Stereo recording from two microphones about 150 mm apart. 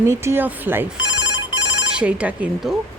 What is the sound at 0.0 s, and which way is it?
Speech, 20° right (ahead or behind).